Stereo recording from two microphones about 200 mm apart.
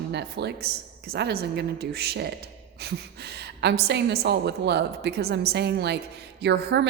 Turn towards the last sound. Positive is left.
turn(degrees=-55)  # may be behind; listen again after turning